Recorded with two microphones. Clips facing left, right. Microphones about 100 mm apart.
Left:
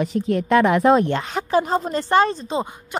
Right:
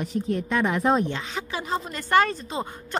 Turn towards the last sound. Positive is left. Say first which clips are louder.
# left 1 dB
turn(degrees=10)  # may be behind; listen again after turning